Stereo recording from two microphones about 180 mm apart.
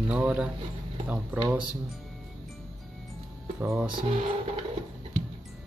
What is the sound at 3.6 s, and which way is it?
Speech, 10° right (ahead or behind).